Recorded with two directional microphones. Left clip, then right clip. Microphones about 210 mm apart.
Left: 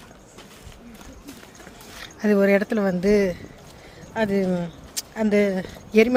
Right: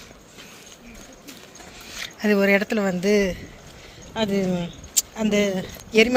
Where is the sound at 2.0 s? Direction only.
10° left (ahead or behind).